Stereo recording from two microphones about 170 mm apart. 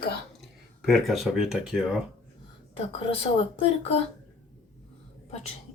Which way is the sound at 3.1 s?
35° left (ahead or behind).